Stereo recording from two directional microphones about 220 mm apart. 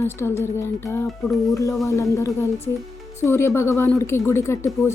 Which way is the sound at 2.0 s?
15° left (ahead or behind).